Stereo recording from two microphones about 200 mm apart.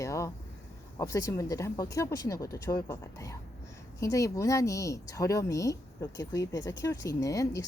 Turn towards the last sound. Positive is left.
turn(degrees=15)  # may be behind; listen again after turning